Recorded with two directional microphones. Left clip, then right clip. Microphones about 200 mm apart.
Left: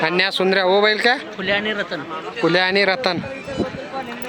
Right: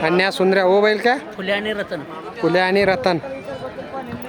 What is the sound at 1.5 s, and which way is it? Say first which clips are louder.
Speech: left 1 dB; 15° right (ahead or behind).